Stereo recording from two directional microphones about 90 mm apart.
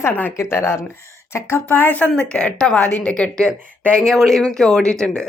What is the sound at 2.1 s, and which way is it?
A woman's voice, 10° left (ahead or behind).